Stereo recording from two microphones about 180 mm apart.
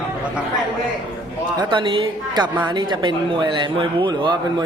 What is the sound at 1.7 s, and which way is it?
Speech, 30° right (ahead or behind).